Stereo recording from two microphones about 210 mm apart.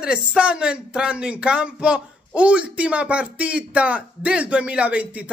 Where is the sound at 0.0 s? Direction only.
5° right (ahead or behind).